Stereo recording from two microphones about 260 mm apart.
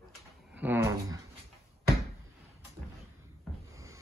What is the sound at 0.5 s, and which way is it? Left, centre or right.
Dog, centre.